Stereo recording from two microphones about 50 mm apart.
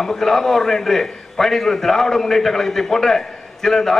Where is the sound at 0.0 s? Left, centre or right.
Centre.